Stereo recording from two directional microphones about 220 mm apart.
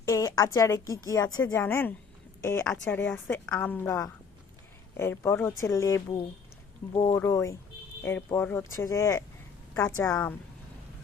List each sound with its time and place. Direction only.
0.0 s a woman's voice: 15° left (ahead or behind)